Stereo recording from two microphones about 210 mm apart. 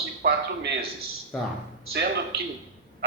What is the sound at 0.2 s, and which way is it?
Speech, 50° right (ahead or behind).